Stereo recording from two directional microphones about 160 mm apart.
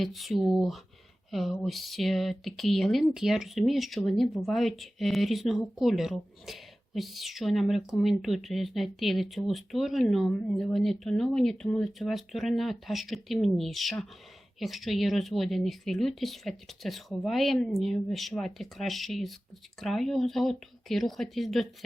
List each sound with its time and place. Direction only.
0.0 s speech: centre (ahead or behind)